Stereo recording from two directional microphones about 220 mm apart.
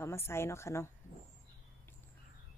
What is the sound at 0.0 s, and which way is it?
Speech, 10° left (ahead or behind).